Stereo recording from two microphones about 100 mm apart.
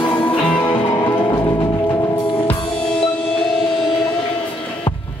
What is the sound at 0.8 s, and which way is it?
Music, 40° left (ahead or behind).